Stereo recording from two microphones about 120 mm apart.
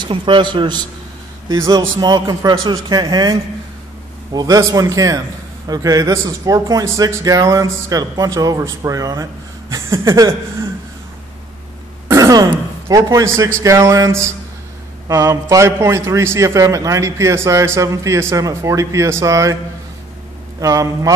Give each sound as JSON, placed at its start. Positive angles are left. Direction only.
{"t": 0.0, "sound": "a man's voice", "side_deg": -45}
{"t": 2.0, "sound": "a man's voice", "side_deg": -35}
{"t": 12.1, "sound": "a man's voice", "side_deg": -30}
{"t": 20.6, "sound": "a man's voice", "side_deg": -30}